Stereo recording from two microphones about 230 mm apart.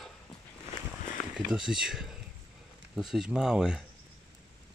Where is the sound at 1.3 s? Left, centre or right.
Centre.